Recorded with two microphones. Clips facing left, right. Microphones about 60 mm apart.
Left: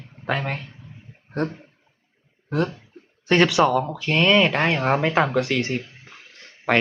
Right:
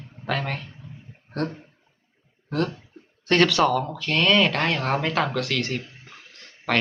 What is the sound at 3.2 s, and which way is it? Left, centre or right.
Speech, centre.